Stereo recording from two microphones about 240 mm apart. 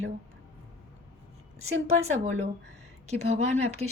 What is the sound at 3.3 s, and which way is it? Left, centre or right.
Speech, right.